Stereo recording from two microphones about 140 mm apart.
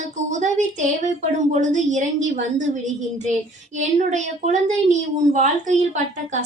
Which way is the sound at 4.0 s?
60° right (ahead or behind).